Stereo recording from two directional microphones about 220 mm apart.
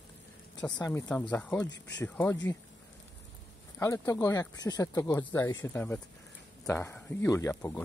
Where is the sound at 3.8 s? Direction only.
15° left (ahead or behind).